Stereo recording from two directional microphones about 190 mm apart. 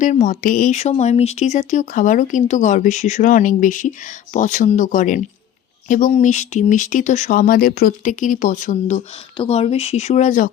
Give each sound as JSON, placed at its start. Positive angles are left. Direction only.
{"t": 0.0, "sound": "speech", "side_deg": 40}